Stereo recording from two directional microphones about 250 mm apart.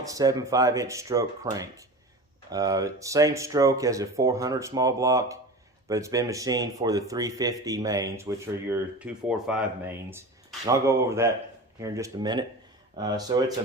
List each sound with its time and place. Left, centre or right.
0.1 s speech: centre